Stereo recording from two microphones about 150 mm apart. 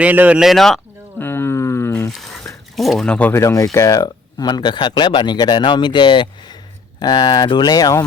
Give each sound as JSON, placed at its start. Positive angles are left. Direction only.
{"t": 0.0, "sound": "speech", "side_deg": -10}
{"t": 1.2, "sound": "a sound", "side_deg": 15}
{"t": 2.0, "sound": "speech", "side_deg": 0}